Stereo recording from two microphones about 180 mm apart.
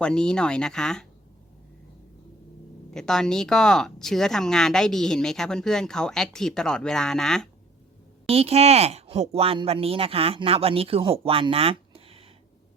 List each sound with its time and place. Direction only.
0.0 s speech: 5° left (ahead or behind)
2.9 s speech: 5° left (ahead or behind)
8.3 s speech: 35° right (ahead or behind)